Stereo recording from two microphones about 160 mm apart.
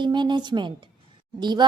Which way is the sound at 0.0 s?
30° right (ahead or behind).